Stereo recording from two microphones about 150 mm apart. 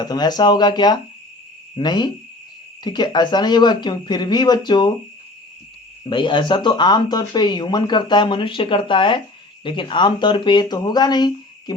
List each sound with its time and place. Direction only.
0.0 s speech: 25° left (ahead or behind)
6.1 s speech: 30° left (ahead or behind)